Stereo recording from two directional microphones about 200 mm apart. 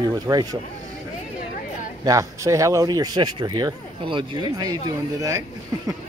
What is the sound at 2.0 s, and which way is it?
Speech, 15° right (ahead or behind).